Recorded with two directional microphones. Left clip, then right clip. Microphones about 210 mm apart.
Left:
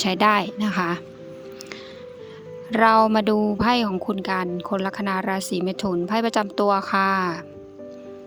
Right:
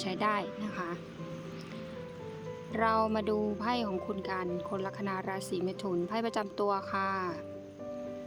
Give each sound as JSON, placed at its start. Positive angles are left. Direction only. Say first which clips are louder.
{"t": 0.0, "sound": "a woman's voice", "louder": "left 13 dB", "side_deg": 40}
{"t": 2.7, "sound": "a woman's voice", "louder": "left 13 dB", "side_deg": 40}